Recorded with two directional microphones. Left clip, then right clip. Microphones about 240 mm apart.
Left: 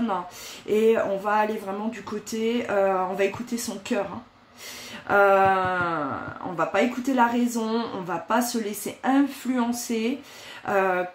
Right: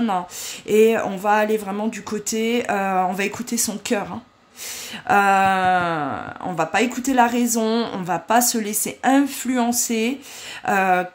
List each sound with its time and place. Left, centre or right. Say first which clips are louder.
0.7 s a woman's voice: right 4 dB; right
5.0 s a woman's voice: right 2 dB; right